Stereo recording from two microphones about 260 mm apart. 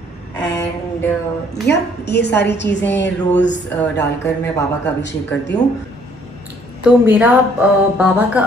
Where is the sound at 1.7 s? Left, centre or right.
Left.